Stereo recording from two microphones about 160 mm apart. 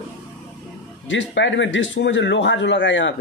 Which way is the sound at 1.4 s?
90° left.